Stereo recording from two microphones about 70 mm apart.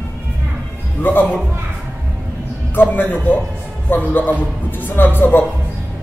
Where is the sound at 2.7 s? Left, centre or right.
Left.